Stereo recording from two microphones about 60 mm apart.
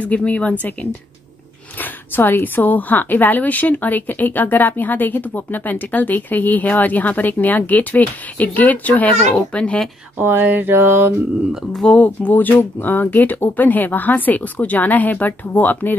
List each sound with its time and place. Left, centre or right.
0.0 s a woman's voice: left
1.8 s a woman's voice: left
9.6 s speech: centre
10.1 s a sound: right
12.0 s a woman's voice: left